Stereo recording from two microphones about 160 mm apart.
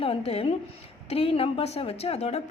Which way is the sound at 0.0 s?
35° left (ahead or behind).